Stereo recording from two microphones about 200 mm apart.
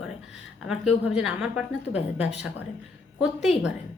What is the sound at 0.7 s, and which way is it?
A woman's voice, 5° right (ahead or behind).